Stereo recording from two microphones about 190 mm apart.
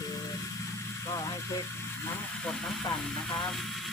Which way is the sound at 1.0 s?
15° left (ahead or behind).